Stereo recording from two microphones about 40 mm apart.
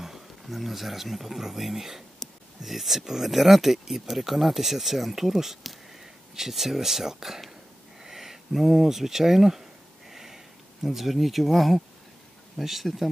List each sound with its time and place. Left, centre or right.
0.0 s speech: centre
8.0 s a sound: centre
12.5 s speech: centre